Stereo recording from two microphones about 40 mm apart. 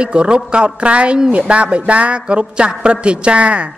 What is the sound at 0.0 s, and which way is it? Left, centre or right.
A woman's voice, right.